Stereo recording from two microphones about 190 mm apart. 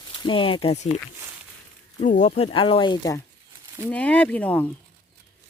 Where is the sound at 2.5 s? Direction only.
25° left (ahead or behind).